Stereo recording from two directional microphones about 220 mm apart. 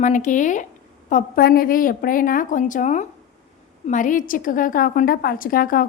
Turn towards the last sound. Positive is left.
turn(degrees=40)  # may be behind; listen again after turning